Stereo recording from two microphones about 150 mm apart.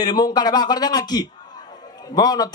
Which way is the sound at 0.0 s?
25° left (ahead or behind).